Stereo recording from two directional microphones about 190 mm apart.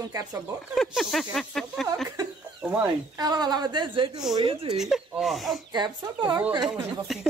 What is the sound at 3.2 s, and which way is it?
A woman's voice, 20° right (ahead or behind).